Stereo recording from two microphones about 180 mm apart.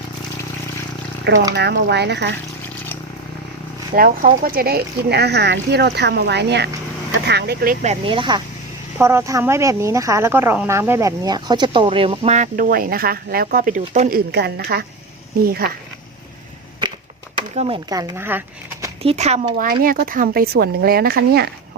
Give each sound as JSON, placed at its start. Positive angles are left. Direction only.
{"t": 1.5, "sound": "speech", "side_deg": -70}
{"t": 3.9, "sound": "speech", "side_deg": -50}
{"t": 8.0, "sound": "speech", "side_deg": -25}
{"t": 9.0, "sound": "speech", "side_deg": -15}
{"t": 12.7, "sound": "speech", "side_deg": -55}
{"t": 14.3, "sound": "speech", "side_deg": -65}
{"t": 17.5, "sound": "speech", "side_deg": -35}
{"t": 17.8, "sound": "speech", "side_deg": -20}
{"t": 19.0, "sound": "speech", "side_deg": -40}
{"t": 19.8, "sound": "speech", "side_deg": -50}